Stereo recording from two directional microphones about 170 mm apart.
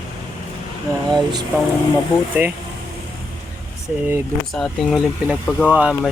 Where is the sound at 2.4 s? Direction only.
10° right (ahead or behind).